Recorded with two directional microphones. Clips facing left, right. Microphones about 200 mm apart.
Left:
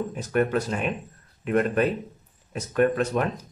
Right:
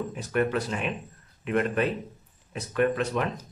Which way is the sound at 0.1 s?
45° left (ahead or behind).